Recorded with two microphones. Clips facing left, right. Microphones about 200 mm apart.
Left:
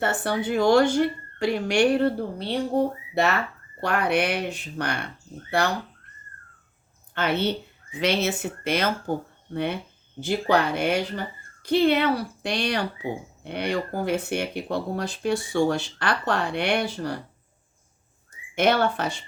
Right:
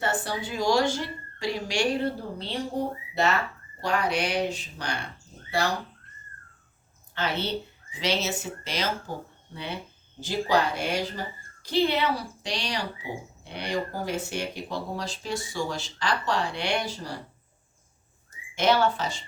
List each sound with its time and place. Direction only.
0.0 s speech: 60° left (ahead or behind)
7.1 s speech: 55° left (ahead or behind)
18.5 s speech: 55° left (ahead or behind)